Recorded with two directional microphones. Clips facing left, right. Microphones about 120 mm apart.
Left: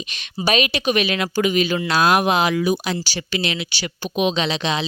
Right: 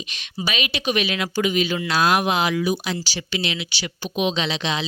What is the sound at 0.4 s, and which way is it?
Speech, 45° left (ahead or behind).